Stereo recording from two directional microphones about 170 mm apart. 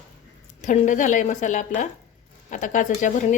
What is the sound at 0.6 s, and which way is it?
A woman's voice, 50° left (ahead or behind).